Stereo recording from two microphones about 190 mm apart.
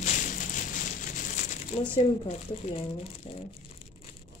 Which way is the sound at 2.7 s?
30° left (ahead or behind).